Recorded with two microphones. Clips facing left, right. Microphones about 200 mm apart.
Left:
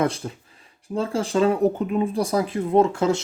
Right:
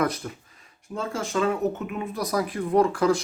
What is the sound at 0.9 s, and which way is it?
Speech, 30° left (ahead or behind).